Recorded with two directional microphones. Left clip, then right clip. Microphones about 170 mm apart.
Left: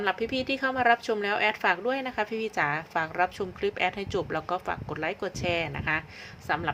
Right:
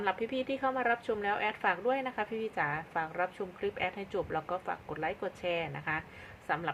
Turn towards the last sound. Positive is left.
turn(degrees=20)  # may be behind; listen again after turning